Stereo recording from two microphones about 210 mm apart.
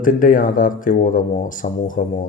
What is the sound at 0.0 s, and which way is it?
Speech, 40° left (ahead or behind).